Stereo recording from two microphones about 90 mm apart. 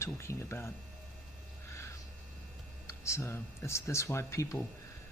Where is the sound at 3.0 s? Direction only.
30° left (ahead or behind).